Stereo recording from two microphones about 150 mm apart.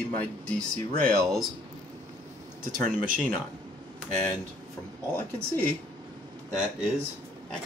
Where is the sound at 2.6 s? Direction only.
65° right (ahead or behind).